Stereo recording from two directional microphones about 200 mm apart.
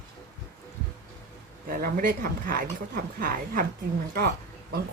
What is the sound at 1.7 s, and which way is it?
A woman's voice, 45° right (ahead or behind).